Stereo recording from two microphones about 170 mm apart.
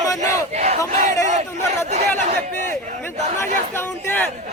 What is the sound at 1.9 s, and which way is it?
Chatter, 40° right (ahead or behind).